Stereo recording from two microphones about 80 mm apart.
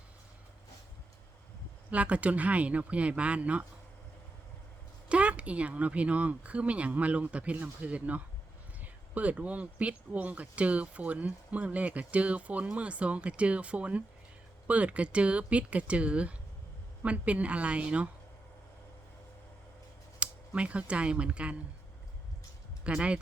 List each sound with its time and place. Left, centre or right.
1.9 s speech: centre
5.0 s speech: centre
20.1 s speech: centre
22.8 s speech: centre